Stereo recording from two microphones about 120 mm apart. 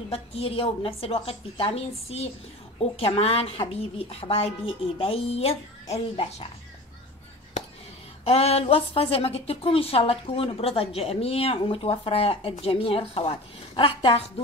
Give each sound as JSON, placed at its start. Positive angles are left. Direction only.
{"t": 0.1, "sound": "a woman's voice", "side_deg": 55}
{"t": 8.3, "sound": "a woman's voice", "side_deg": 55}